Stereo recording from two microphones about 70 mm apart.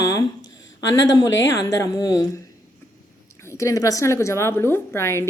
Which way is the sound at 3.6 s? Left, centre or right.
Left.